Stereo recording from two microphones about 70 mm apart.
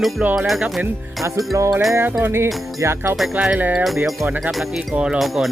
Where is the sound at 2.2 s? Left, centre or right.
Right.